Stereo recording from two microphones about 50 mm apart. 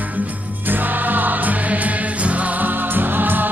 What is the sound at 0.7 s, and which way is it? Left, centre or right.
Music, right.